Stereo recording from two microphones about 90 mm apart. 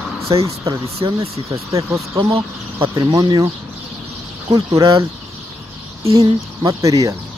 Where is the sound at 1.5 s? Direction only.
35° right (ahead or behind).